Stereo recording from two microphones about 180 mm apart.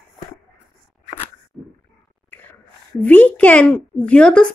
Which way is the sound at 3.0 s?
10° left (ahead or behind).